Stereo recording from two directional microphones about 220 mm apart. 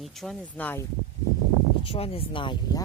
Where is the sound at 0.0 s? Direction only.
Centre (ahead or behind).